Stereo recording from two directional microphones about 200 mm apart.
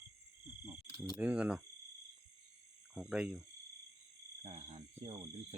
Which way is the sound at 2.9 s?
5° right (ahead or behind).